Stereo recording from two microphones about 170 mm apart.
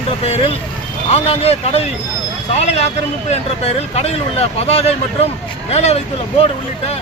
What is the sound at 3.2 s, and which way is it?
Speech, 40° left (ahead or behind).